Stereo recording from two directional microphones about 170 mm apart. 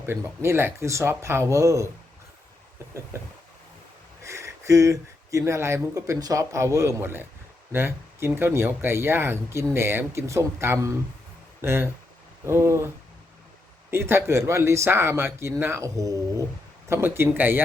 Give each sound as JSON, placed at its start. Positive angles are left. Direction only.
{"t": 0.0, "sound": "speech", "side_deg": -15}
{"t": 4.2, "sound": "a sound", "side_deg": -15}
{"t": 5.5, "sound": "speech", "side_deg": -15}
{"t": 13.9, "sound": "speech", "side_deg": -15}